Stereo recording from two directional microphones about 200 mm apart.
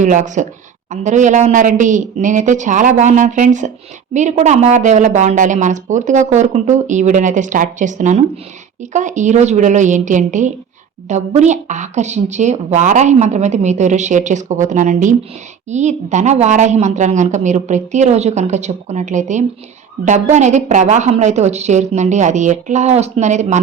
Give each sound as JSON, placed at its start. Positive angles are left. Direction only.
{"t": 0.0, "sound": "speech", "side_deg": -40}